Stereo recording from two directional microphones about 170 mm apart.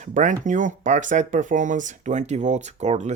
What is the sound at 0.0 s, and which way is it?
Speech, 45° right (ahead or behind).